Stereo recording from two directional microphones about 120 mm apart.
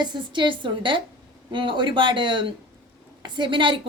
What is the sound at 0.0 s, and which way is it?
A woman's voice, 40° right (ahead or behind).